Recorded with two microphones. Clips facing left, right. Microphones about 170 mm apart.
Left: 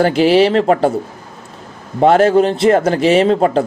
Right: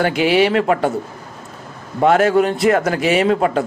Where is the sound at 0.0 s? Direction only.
30° left (ahead or behind).